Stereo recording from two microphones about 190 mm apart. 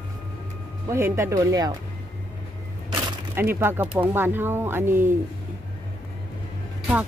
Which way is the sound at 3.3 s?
10° right (ahead or behind).